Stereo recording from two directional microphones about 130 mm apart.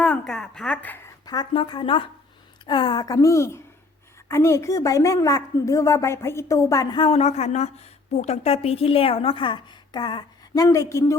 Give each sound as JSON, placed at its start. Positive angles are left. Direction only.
{"t": 0.0, "sound": "a woman's voice", "side_deg": 5}
{"t": 1.2, "sound": "a sound", "side_deg": 30}
{"t": 1.5, "sound": "a woman's voice", "side_deg": 35}
{"t": 6.9, "sound": "a man's voice", "side_deg": 45}
{"t": 7.2, "sound": "a woman's voice", "side_deg": 60}